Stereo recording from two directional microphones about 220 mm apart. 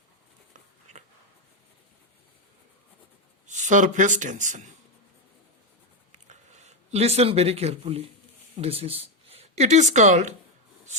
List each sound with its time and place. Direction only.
3.4 s speech: 35° right (ahead or behind)
6.1 s a sound: 30° right (ahead or behind)
8.5 s speech: 30° right (ahead or behind)